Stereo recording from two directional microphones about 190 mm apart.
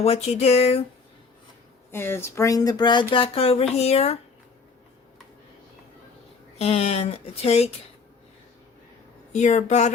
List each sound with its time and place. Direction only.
0.0 s speech: 30° left (ahead or behind)
1.9 s speech: 10° left (ahead or behind); by 4.2 s 35° left (ahead or behind)
6.6 s speech: 30° left (ahead or behind)
9.3 s speech: 40° left (ahead or behind)